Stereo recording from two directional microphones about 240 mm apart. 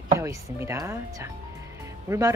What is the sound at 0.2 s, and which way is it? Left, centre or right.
Speech, centre.